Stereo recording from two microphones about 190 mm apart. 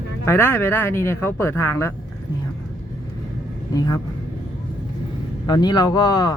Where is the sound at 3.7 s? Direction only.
20° left (ahead or behind).